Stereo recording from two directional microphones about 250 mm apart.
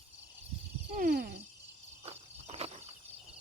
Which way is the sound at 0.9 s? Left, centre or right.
Right.